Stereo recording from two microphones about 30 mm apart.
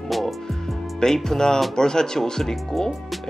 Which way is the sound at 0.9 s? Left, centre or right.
Centre.